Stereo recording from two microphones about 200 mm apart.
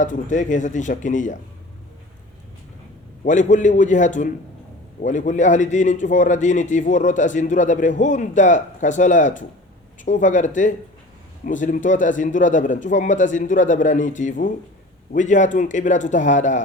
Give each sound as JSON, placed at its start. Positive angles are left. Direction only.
{"t": 0.0, "sound": "a man's voice", "side_deg": 40}
{"t": 3.2, "sound": "a man's voice", "side_deg": 40}